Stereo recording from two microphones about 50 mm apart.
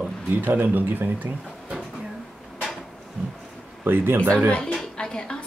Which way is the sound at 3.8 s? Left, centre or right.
Right.